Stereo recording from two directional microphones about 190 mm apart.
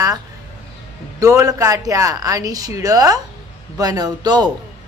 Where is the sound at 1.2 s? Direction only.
15° right (ahead or behind).